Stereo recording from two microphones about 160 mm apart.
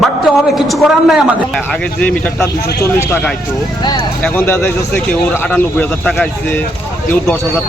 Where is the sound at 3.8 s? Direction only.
25° left (ahead or behind).